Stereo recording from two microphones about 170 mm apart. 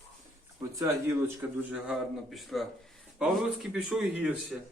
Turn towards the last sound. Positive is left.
turn(degrees=-5)  # may be behind; listen again after turning